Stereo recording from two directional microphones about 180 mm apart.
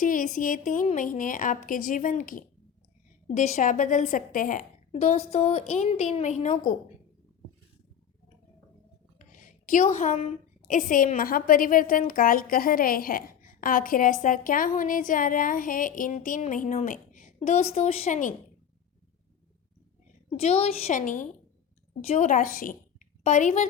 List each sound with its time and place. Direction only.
0.0 s a woman's voice: 45° left (ahead or behind)
4.9 s a woman's voice: 35° left (ahead or behind)
9.1 s a woman's voice: 45° left (ahead or behind)
20.3 s a woman's voice: 35° left (ahead or behind)